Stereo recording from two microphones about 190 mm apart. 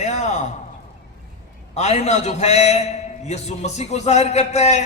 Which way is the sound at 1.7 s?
35° left (ahead or behind).